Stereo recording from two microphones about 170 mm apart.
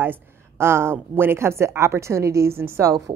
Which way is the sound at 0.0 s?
15° right (ahead or behind).